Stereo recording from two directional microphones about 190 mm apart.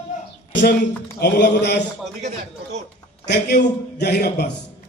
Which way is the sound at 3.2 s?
60° left (ahead or behind).